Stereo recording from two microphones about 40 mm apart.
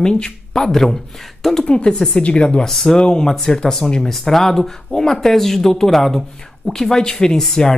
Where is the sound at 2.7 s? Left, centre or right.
Centre.